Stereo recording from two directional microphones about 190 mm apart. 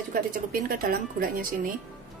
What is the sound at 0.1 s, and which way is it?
A woman's voice, 45° right (ahead or behind).